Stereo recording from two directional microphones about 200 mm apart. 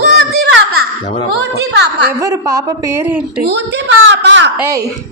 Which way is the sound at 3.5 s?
60° right (ahead or behind).